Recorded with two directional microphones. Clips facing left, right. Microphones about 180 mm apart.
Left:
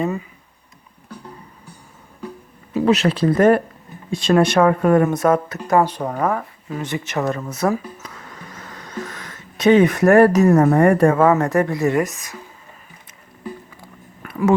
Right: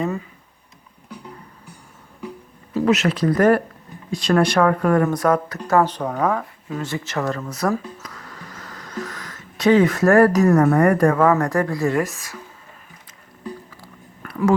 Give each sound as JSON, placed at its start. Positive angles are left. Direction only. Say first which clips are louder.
{"t": 2.8, "sound": "speech", "louder": "left 2 dB", "side_deg": 30}
{"t": 5.6, "sound": "speech", "louder": "even", "side_deg": 15}
{"t": 6.8, "sound": "speech", "louder": "left 3 dB", "side_deg": 20}